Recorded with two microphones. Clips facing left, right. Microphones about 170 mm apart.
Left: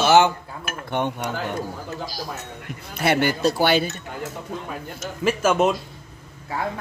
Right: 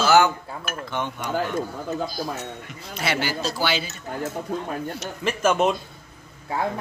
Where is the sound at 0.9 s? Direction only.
60° left (ahead or behind).